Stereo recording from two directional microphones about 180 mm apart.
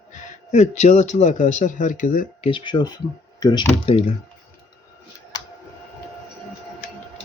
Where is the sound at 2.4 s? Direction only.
25° left (ahead or behind).